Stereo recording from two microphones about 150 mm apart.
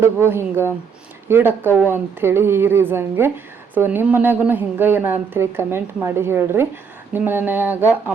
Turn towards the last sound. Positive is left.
turn(degrees=-10)  # may be behind; listen again after turning